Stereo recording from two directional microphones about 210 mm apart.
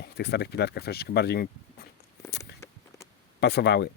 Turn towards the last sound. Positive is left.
turn(degrees=50)  # may be behind; listen again after turning